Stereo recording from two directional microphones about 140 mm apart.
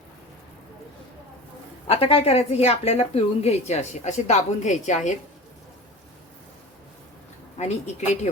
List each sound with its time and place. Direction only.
1.9 s a woman's voice: 45° left (ahead or behind)
7.6 s a woman's voice: 55° left (ahead or behind)